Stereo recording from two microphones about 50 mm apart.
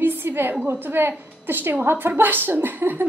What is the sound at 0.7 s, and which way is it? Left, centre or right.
A woman's voice, right.